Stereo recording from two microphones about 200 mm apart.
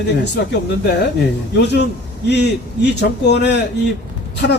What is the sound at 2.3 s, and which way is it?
A man's voice, 55° left (ahead or behind).